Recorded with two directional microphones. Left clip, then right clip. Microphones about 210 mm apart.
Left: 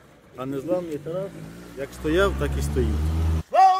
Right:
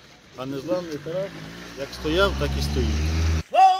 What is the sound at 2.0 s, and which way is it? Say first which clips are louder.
Speech: even; 15° left (ahead or behind).